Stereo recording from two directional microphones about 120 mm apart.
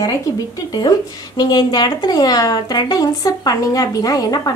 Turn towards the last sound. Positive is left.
turn(degrees=30)  # may be behind; listen again after turning